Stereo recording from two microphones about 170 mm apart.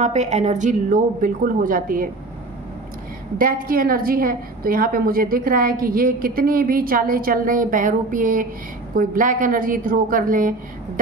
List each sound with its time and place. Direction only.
0.0 s a woman's voice: 40° right (ahead or behind)
3.3 s a woman's voice: 55° right (ahead or behind)